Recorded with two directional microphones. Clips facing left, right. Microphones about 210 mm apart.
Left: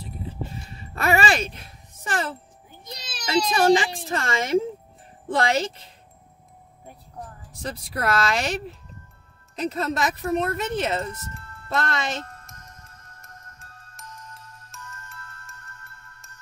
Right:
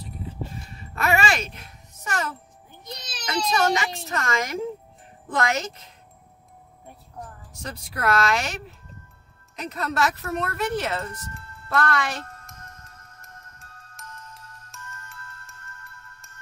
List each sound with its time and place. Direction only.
0.9 s music: 30° left (ahead or behind)
3.3 s a child's voice: 30° left (ahead or behind)
7.6 s speech: 35° left (ahead or behind)
9.6 s a child's voice: 30° left (ahead or behind)
10.0 s a child's voice: 15° left (ahead or behind)
13.2 s music: centre (ahead or behind)